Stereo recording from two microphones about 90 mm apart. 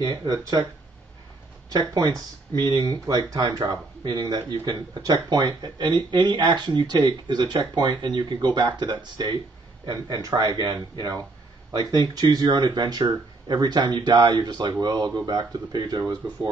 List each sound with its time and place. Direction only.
0.0 s speech: 45° right (ahead or behind)
1.7 s speech: 50° right (ahead or behind)